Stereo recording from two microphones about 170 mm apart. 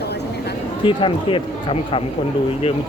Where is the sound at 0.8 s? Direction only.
30° left (ahead or behind).